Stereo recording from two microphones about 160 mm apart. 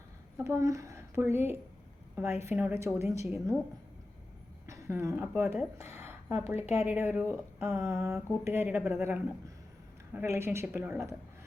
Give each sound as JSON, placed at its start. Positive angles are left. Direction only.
{"t": 0.4, "sound": "speech", "side_deg": -20}
{"t": 2.4, "sound": "a woman's voice", "side_deg": -15}
{"t": 4.6, "sound": "a woman's voice", "side_deg": -20}